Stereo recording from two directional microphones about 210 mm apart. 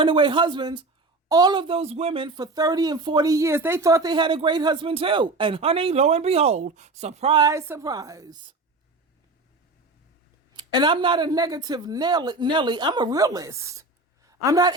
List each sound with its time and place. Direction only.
0.0 s speech: 25° right (ahead or behind)
10.5 s a woman's voice: 20° right (ahead or behind)